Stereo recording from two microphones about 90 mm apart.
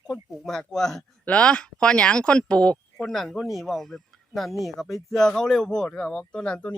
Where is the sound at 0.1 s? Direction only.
Centre (ahead or behind).